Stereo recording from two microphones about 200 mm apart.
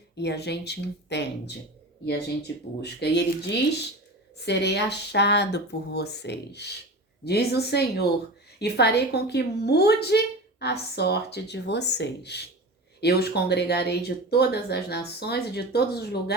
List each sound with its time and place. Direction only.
0.2 s speech: 55° left (ahead or behind)
2.8 s speech: 55° left (ahead or behind)